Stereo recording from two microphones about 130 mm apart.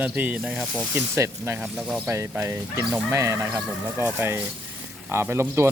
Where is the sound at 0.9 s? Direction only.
20° right (ahead or behind).